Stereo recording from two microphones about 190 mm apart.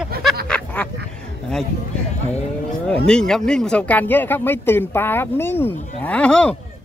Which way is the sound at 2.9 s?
5° left (ahead or behind).